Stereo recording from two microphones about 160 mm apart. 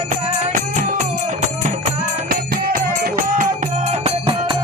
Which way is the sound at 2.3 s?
60° right (ahead or behind).